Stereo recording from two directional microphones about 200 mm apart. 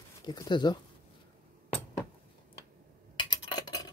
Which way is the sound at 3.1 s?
20° left (ahead or behind).